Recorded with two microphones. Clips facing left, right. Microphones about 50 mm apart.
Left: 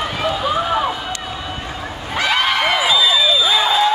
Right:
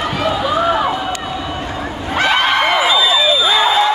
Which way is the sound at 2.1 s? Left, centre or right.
Right.